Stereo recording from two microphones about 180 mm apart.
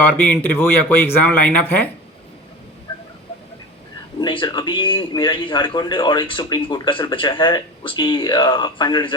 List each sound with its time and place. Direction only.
0.0 s speech: 10° left (ahead or behind)
4.2 s a man's voice: 25° left (ahead or behind)